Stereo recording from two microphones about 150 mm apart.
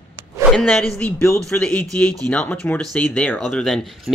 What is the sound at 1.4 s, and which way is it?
Speech, 5° left (ahead or behind).